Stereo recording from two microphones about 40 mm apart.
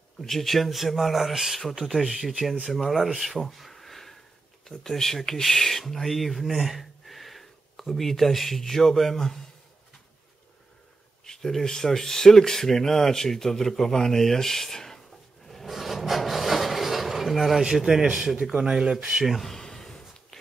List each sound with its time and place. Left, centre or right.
0.2 s speech: centre
11.2 s speech: centre
15.4 s drawer open or close: centre
15.7 s rub: centre
17.6 s speech: centre
18.4 s speech: right
19.2 s speech: centre
19.6 s a sound: centre